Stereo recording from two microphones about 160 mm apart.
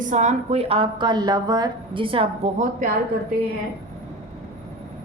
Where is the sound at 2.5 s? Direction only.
50° right (ahead or behind).